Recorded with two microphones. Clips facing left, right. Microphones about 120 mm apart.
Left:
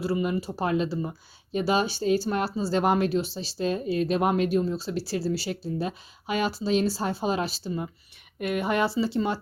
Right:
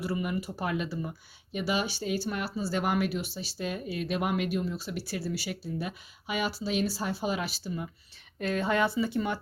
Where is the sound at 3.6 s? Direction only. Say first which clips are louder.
Left 8 dB; 30° left (ahead or behind).